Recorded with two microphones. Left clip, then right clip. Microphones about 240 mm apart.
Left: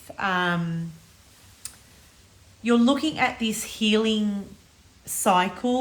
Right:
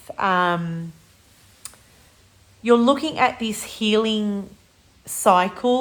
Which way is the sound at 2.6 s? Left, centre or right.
Centre.